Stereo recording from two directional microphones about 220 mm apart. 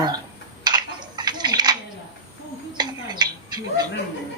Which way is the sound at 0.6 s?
20° right (ahead or behind).